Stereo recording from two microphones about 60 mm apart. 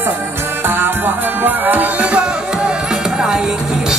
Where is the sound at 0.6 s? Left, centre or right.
Right.